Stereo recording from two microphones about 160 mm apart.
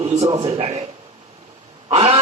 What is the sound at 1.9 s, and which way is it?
Speech, 35° right (ahead or behind).